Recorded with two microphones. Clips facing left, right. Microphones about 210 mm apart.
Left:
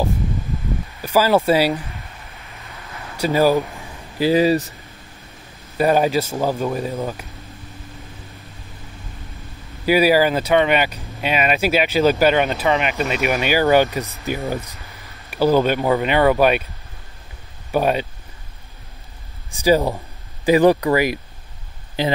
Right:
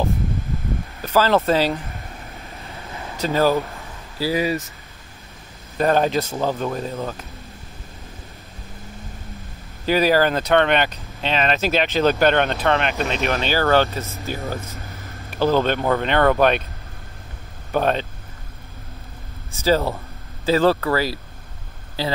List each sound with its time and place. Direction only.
1.0 s speech: 10° left (ahead or behind)
3.2 s speech: 15° left (ahead or behind)
4.2 s speech: 30° left (ahead or behind)
5.8 s speech: 10° left (ahead or behind)
9.8 s speech: 10° left (ahead or behind)
14.8 s a sound: 50° right (ahead or behind)
15.2 s speech: 10° left (ahead or behind)
17.6 s speech: 10° left (ahead or behind)
19.5 s speech: 15° left (ahead or behind)